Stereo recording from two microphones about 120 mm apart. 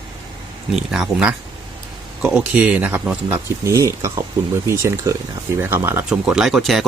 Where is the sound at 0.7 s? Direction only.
5° right (ahead or behind); by 6.0 s 20° right (ahead or behind).